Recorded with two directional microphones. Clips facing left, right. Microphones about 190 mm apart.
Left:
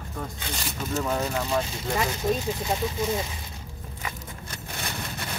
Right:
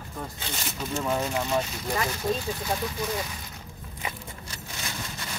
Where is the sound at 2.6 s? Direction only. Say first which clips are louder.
Left 3 dB; 25° left (ahead or behind).